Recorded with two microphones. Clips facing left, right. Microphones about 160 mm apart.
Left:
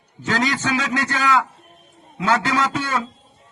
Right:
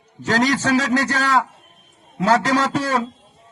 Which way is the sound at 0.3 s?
40° right (ahead or behind).